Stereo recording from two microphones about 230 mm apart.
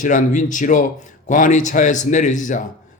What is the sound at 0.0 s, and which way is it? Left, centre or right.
Speech, left.